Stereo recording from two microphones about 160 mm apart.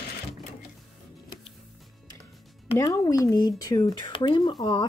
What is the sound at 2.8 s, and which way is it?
Speech, 20° left (ahead or behind).